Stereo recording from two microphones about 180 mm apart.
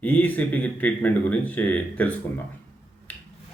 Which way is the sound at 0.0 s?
10° left (ahead or behind).